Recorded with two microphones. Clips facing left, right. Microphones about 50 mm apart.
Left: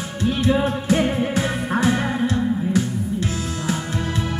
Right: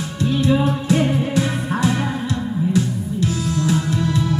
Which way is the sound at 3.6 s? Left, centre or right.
Left.